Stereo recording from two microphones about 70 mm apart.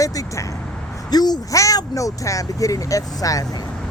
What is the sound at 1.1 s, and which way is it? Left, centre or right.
Speech, left.